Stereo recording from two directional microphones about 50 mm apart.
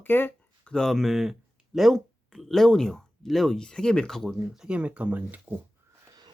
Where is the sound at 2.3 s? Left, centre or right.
Centre.